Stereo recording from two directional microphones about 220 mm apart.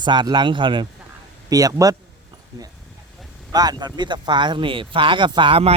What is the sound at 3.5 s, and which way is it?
Speech, 20° right (ahead or behind).